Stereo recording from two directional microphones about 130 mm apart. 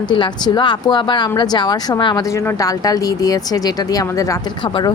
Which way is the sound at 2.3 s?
20° left (ahead or behind).